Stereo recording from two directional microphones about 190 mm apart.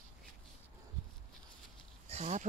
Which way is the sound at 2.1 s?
40° right (ahead or behind).